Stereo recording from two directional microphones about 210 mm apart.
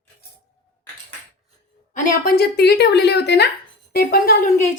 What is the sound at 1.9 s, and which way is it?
Speech, 40° left (ahead or behind).